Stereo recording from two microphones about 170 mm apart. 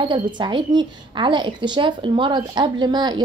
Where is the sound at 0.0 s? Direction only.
30° right (ahead or behind).